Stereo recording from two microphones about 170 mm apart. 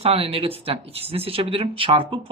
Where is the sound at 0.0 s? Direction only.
35° right (ahead or behind).